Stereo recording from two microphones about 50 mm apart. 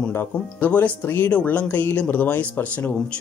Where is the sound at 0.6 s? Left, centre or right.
Left.